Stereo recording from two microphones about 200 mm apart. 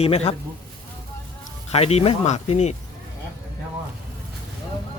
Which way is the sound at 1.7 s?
30° left (ahead or behind).